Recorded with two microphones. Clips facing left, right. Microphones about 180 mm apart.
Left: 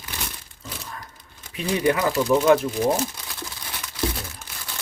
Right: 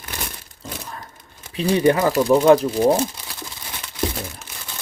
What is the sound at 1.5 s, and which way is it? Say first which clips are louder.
Speech: right 5 dB; 30° right (ahead or behind).